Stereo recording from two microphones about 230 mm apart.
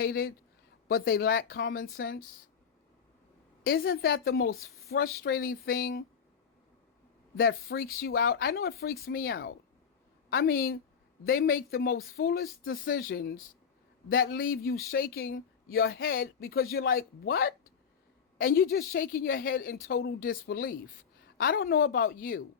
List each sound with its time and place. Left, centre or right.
0.0 s a woman's voice: left
3.6 s a woman's voice: left
7.3 s a woman's voice: left